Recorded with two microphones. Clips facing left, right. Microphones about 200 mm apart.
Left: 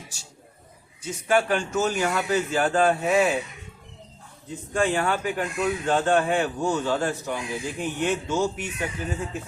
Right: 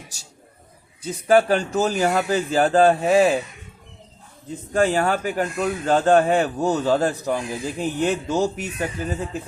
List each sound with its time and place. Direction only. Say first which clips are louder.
0.1 s speech: even; 40° right (ahead or behind)
4.7 s speech: right 4 dB; 40° right (ahead or behind)